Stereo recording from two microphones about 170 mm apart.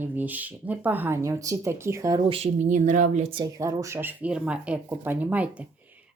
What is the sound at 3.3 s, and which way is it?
Speech, 20° right (ahead or behind).